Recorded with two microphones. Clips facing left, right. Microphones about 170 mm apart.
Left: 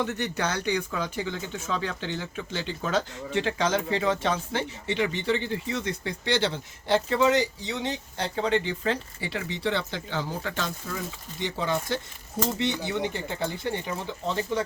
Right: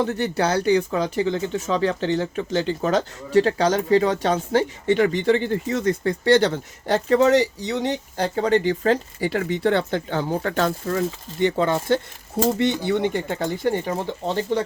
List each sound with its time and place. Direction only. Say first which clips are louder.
0.0 s speech: right 7 dB; 35° right (ahead or behind); by 13.7 s 55° right (ahead or behind)
13.8 s speech: right 6 dB; 30° right (ahead or behind)